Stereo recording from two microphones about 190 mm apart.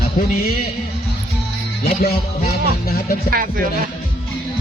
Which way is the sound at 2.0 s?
55° left (ahead or behind).